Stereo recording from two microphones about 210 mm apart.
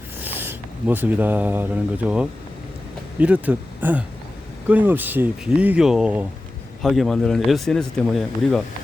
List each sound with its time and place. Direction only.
0.2 s speech: 10° right (ahead or behind)